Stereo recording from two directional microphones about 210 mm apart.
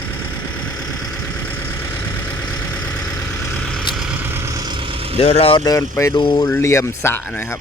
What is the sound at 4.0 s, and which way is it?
Vehicle, 5° right (ahead or behind).